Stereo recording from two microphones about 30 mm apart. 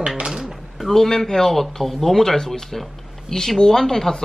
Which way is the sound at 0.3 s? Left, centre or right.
Centre.